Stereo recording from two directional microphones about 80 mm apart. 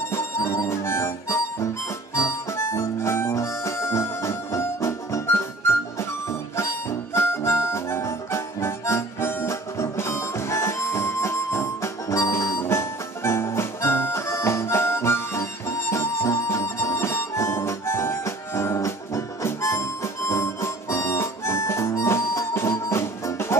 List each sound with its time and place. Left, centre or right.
0.1 s harmonica: left
7.2 s harmonica: left